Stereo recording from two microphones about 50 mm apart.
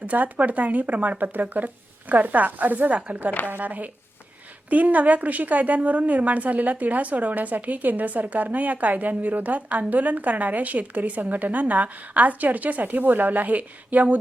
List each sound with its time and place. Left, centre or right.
0.0 s a woman's voice: right